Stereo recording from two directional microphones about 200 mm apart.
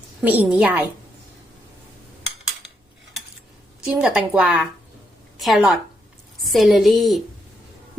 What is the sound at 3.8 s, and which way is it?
Speech, 5° right (ahead or behind).